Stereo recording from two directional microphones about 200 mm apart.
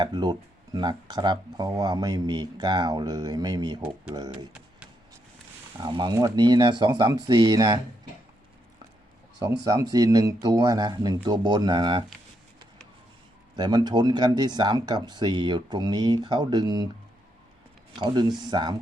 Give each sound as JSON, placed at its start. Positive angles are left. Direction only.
{"t": 0.0, "sound": "speech", "side_deg": -20}
{"t": 5.7, "sound": "speech", "side_deg": -25}
{"t": 9.4, "sound": "speech", "side_deg": -15}
{"t": 13.6, "sound": "speech", "side_deg": -20}
{"t": 18.0, "sound": "speech", "side_deg": -20}